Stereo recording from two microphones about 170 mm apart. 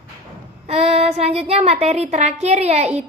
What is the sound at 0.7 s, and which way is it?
A woman's voice, 35° right (ahead or behind).